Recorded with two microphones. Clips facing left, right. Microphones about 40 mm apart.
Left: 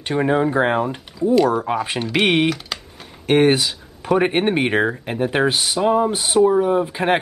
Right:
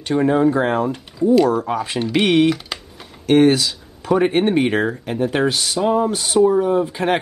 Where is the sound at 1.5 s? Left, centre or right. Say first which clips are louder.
Even; left.